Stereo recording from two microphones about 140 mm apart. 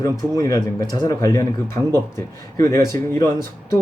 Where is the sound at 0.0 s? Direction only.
25° left (ahead or behind).